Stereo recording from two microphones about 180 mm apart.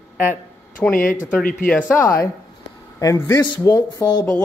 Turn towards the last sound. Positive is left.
turn(degrees=20)  # may be behind; listen again after turning